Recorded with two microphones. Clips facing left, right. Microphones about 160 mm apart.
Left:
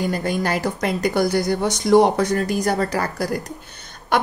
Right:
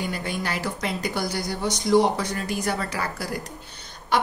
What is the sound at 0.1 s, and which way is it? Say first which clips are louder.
Speech: left 7 dB; 45° left (ahead or behind).